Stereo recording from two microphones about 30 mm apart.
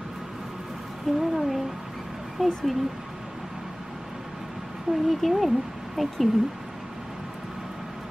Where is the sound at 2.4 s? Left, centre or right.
Right.